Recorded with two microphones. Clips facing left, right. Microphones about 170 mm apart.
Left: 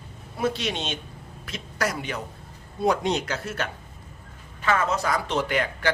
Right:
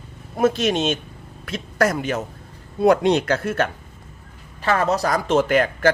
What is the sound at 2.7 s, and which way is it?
Speech, 60° right (ahead or behind).